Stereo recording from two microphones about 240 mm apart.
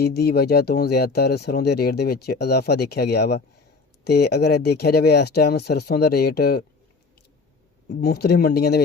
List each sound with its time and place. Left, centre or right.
0.0 s speech: left
7.9 s speech: left